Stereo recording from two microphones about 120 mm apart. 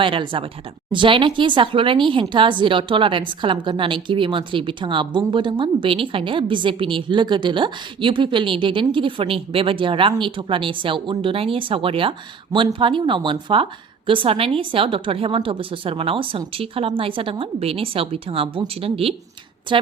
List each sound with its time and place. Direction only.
0.0 s speech: 45° right (ahead or behind)